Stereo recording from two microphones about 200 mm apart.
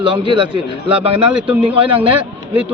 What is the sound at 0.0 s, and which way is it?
Speech, 25° right (ahead or behind).